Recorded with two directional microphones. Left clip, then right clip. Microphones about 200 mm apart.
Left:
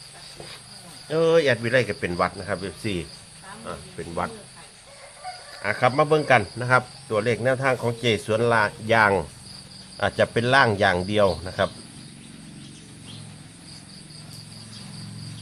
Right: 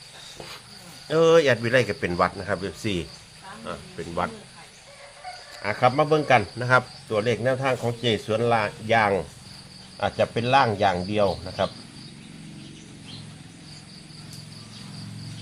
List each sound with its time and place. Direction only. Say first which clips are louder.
1.0 s speech: right 2 dB; 15° right (ahead or behind)
5.6 s speech: even; centre (ahead or behind); by 11.7 s 30° left (ahead or behind)